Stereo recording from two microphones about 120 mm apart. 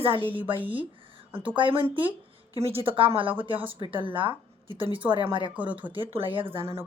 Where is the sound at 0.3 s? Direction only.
45° right (ahead or behind).